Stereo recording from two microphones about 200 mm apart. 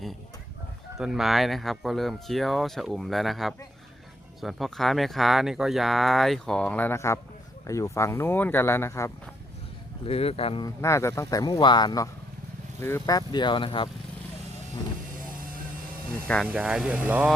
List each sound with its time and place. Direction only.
0.9 s speech: centre (ahead or behind)
10.1 s speech: 30° left (ahead or behind)
10.8 s speech: 15° left (ahead or behind)
16.2 s speech: 5° left (ahead or behind)
16.5 s speech: 5° right (ahead or behind)